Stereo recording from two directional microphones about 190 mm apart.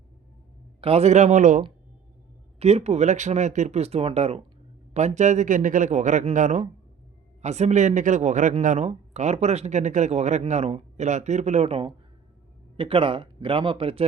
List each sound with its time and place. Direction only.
0.8 s speech: 30° right (ahead or behind)